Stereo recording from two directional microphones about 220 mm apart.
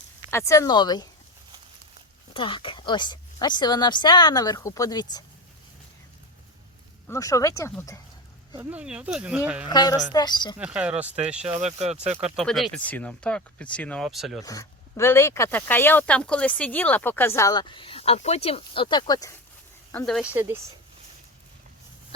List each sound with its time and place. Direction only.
0.3 s speech: 10° left (ahead or behind)
2.3 s a woman's voice: 20° left (ahead or behind)
7.1 s speech: 15° left (ahead or behind)
8.7 s speech: 5° right (ahead or behind)
9.6 s a woman's voice: 20° left (ahead or behind)
10.6 s speech: 5° right (ahead or behind)
11.6 s speech: 30° right (ahead or behind)
12.4 s speech: centre (ahead or behind)
14.4 s speech: 15° left (ahead or behind)
19.9 s speech: 5° left (ahead or behind)
20.3 s speech: 10° right (ahead or behind)